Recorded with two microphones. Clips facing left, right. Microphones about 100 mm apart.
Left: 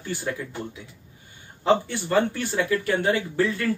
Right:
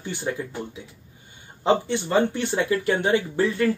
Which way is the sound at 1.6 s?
20° right (ahead or behind).